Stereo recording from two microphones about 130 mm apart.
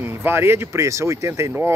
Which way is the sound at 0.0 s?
15° right (ahead or behind).